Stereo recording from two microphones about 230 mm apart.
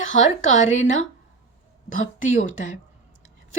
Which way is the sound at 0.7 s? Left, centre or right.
Left.